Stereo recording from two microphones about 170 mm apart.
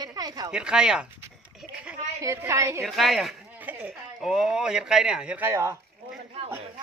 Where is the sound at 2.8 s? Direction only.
Centre (ahead or behind).